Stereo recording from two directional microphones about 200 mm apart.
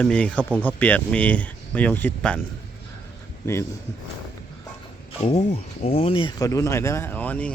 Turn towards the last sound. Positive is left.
turn(degrees=10)  # may be behind; listen again after turning